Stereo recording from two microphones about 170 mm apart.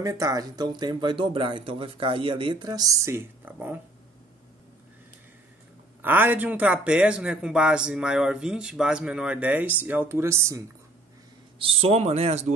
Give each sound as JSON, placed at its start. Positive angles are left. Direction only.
{"t": 0.0, "sound": "speech", "side_deg": -20}
{"t": 6.0, "sound": "speech", "side_deg": -10}
{"t": 11.5, "sound": "speech", "side_deg": -35}